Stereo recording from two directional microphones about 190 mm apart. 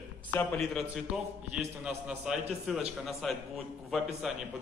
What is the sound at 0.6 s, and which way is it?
Speech, centre (ahead or behind).